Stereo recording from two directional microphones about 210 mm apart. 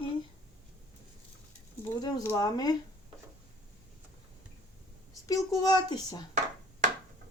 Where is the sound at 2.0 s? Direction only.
15° left (ahead or behind).